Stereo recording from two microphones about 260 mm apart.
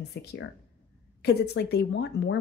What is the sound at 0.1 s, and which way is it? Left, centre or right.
Speech, left.